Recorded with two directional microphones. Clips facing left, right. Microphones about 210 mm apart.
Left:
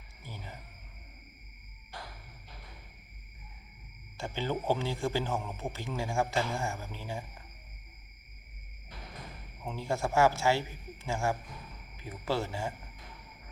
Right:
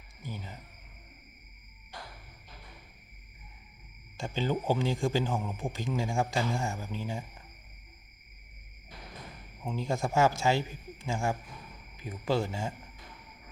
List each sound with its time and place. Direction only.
0.2 s cricket: 15° right (ahead or behind)
4.2 s speech: 15° right (ahead or behind)
9.6 s speech: 15° right (ahead or behind)